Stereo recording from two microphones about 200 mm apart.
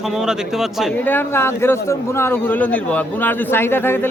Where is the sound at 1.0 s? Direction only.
10° left (ahead or behind).